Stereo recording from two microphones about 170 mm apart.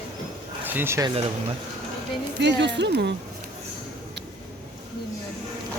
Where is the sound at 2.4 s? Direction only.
90° right.